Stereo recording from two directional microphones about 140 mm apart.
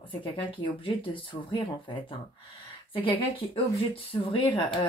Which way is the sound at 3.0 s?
40° left (ahead or behind).